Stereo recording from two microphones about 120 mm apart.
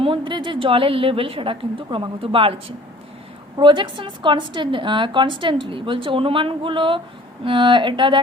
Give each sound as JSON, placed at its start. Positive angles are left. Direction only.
{"t": 0.0, "sound": "a woman's voice", "side_deg": -45}